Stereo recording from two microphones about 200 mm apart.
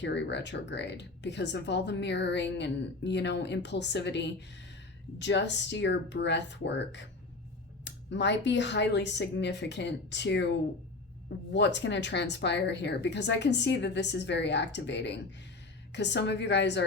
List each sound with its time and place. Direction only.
0.0 s speech: 60° left (ahead or behind)
11.5 s speech: 60° left (ahead or behind)